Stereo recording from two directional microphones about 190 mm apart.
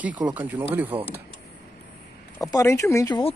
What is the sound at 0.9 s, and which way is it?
Speech, 30° right (ahead or behind).